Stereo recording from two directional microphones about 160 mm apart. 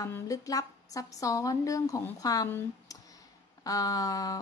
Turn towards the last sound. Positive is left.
turn(degrees=20)  # may be behind; listen again after turning